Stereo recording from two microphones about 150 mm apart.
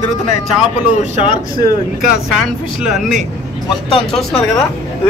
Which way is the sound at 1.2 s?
35° left (ahead or behind).